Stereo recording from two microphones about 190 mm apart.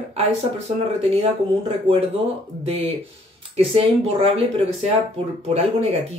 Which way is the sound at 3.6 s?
30° right (ahead or behind).